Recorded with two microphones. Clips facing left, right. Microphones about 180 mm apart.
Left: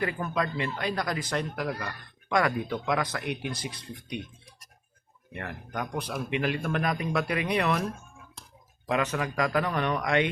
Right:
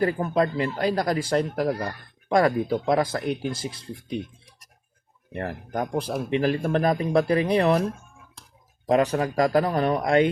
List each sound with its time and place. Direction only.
0.0 s speech: 35° right (ahead or behind)
5.3 s speech: 35° right (ahead or behind)
8.9 s speech: 35° right (ahead or behind)